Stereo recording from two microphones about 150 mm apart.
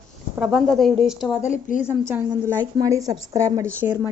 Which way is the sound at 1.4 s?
60° left (ahead or behind).